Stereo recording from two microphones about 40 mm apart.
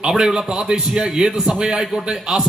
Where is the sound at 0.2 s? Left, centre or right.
Centre.